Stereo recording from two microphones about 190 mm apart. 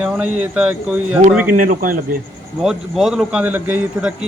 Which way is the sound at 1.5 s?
45° right (ahead or behind).